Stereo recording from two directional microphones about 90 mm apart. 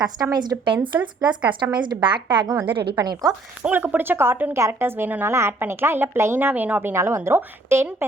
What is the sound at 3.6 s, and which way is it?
A woman's voice, 20° right (ahead or behind).